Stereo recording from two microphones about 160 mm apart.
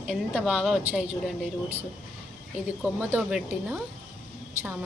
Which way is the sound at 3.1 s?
5° right (ahead or behind).